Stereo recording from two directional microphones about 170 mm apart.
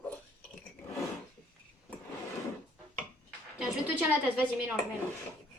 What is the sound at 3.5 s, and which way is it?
A woman's voice, 10° right (ahead or behind).